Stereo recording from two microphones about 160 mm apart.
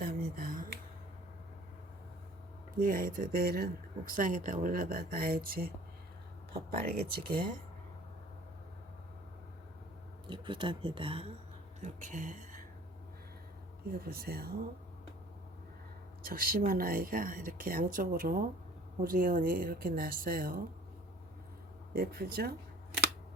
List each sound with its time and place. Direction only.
0.0 s a sound: 65° right (ahead or behind)
2.7 s speech: 60° right (ahead or behind)
6.5 s speech: 80° right
10.2 s speech: 30° right (ahead or behind)
11.8 s speech: 50° right (ahead or behind)
13.8 s speech: 70° right (ahead or behind)
16.2 s speech: 65° right (ahead or behind)
21.9 s speech: 70° right (ahead or behind)